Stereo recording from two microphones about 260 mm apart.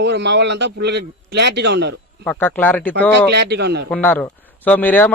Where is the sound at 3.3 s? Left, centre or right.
Right.